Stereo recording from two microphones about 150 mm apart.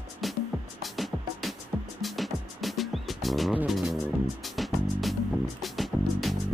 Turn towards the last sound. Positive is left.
turn(degrees=0)  # may be behind; listen again after turning